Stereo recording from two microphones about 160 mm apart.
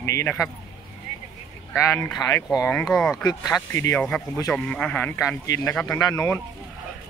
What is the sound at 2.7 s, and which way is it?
Speech, 5° left (ahead or behind).